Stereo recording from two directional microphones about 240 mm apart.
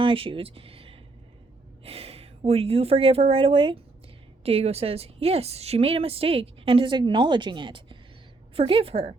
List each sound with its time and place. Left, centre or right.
0.0 s a woman's voice: right